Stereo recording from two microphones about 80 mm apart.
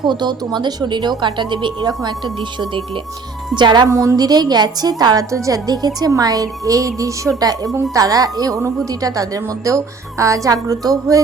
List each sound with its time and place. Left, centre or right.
0.0 s speech: right
1.9 s speech: right
3.5 s speech: right
3.8 s a woman's voice: right
5.3 s a woman's voice: right